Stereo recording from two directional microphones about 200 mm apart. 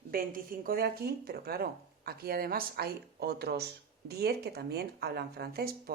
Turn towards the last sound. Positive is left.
turn(degrees=-50)  # may be behind; listen again after turning